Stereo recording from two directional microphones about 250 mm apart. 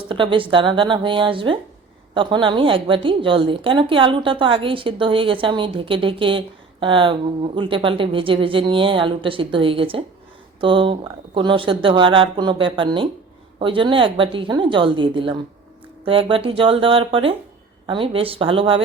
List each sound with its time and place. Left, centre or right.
0.1 s a woman's voice: centre